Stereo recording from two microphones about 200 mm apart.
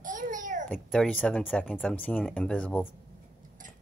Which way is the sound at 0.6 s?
5° left (ahead or behind).